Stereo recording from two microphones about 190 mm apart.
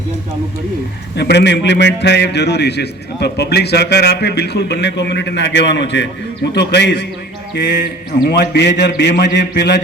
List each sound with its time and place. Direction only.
1.1 s a man's voice: 60° left (ahead or behind)
8.1 s a man's voice: 55° left (ahead or behind)